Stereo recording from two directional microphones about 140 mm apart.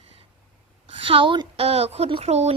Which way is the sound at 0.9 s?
40° right (ahead or behind).